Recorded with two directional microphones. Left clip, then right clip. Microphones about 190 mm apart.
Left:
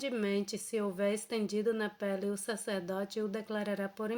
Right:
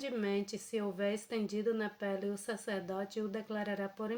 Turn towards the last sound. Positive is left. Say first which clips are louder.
# left 2 dB
turn(degrees=35)  # may be behind; listen again after turning